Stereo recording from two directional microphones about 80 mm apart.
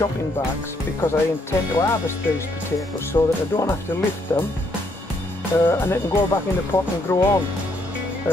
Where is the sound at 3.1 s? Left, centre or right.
Left.